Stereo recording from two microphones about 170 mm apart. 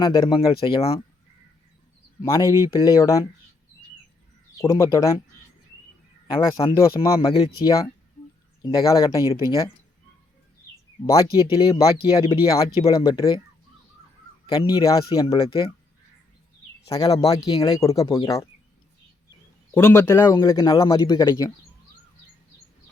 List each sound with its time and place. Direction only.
0.0 s speech: 25° left (ahead or behind)
2.2 s speech: 20° left (ahead or behind)
4.7 s speech: 20° left (ahead or behind)
6.2 s speech: 20° left (ahead or behind)
7.2 s speech: 30° left (ahead or behind)
11.0 s speech: 25° left (ahead or behind)
14.4 s speech: 25° left (ahead or behind)
17.2 s speech: 20° left (ahead or behind)
19.7 s a man's voice: 15° left (ahead or behind)